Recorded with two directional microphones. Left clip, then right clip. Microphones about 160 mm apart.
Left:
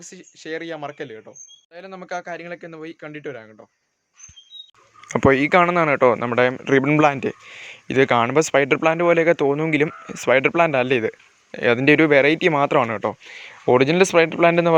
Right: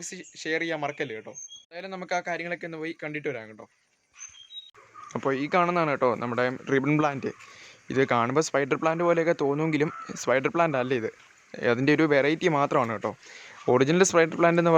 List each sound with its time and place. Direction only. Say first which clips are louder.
0.0 s speech: right 2 dB; centre (ahead or behind)
5.1 s speech: left 10 dB; 35° left (ahead or behind)
5.6 s a man's voice: left 8 dB; 20° left (ahead or behind)